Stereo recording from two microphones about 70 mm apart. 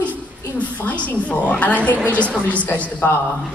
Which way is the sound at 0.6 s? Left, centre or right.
Centre.